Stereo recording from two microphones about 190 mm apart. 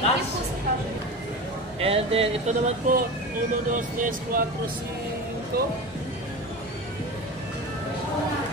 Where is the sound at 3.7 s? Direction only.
45° right (ahead or behind).